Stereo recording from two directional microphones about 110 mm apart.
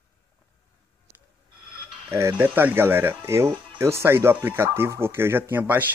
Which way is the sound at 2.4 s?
15° right (ahead or behind).